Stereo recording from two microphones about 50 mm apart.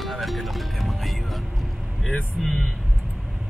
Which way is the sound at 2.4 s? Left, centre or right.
Centre.